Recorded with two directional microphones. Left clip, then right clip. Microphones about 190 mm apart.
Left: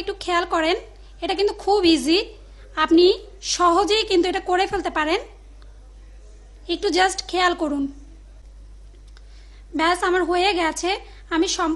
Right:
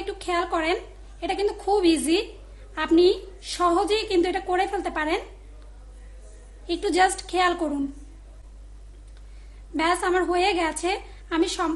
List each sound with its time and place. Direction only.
0.0 s a woman's voice: 25° left (ahead or behind)
6.6 s a woman's voice: 25° left (ahead or behind)
9.8 s a woman's voice: 25° left (ahead or behind)